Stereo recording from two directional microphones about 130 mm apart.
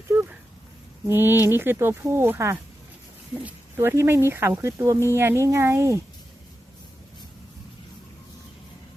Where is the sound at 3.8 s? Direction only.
20° right (ahead or behind).